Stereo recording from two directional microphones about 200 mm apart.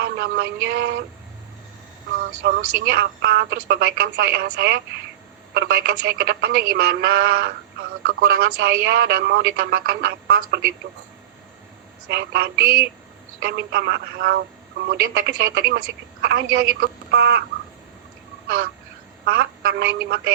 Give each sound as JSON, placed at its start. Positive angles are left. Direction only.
{"t": 0.0, "sound": "speech", "side_deg": -50}
{"t": 2.4, "sound": "a woman's voice", "side_deg": -55}
{"t": 12.0, "sound": "a woman's voice", "side_deg": -55}
{"t": 18.4, "sound": "crow", "side_deg": -45}
{"t": 19.2, "sound": "a woman's voice", "side_deg": -50}